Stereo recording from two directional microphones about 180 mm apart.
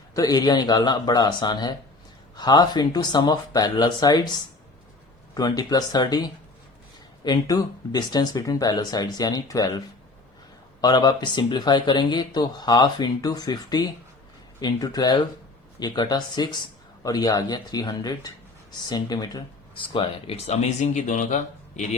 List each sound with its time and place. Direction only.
0.1 s speech: 20° left (ahead or behind)
5.3 s speech: 20° left (ahead or behind); by 21.8 s 45° left (ahead or behind)